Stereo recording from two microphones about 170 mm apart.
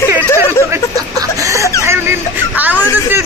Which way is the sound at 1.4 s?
20° right (ahead or behind).